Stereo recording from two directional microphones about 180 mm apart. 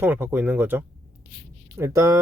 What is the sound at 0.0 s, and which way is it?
Speech, 10° right (ahead or behind).